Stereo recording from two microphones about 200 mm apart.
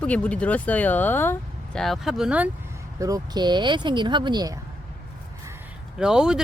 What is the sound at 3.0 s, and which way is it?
Speech, 20° right (ahead or behind).